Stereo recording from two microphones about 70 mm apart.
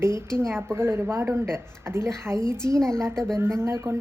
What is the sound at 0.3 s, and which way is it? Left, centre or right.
A woman's voice, right.